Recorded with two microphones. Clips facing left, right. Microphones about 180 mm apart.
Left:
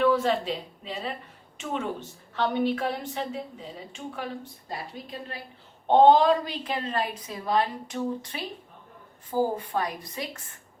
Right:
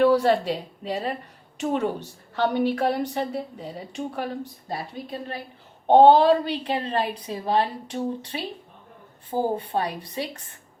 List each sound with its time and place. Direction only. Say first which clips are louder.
0.0 s a woman's voice: right 4 dB; 40° right (ahead or behind)
5.9 s speech: right 3 dB; 35° right (ahead or behind)